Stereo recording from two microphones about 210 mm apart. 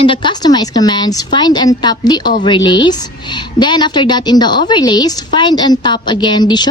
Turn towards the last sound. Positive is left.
turn(degrees=20)  # may be behind; listen again after turning